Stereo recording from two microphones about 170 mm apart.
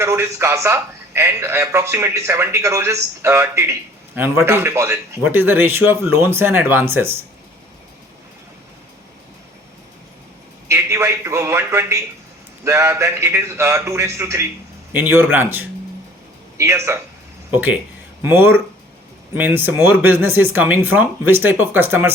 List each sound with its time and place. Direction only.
0.0 s a man's voice: 15° right (ahead or behind)
10.7 s a man's voice: 15° right (ahead or behind)